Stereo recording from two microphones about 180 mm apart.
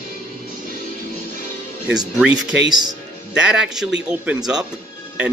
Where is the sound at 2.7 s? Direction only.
25° right (ahead or behind).